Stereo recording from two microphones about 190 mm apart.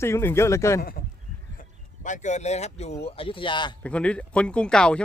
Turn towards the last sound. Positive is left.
turn(degrees=5)  # may be behind; listen again after turning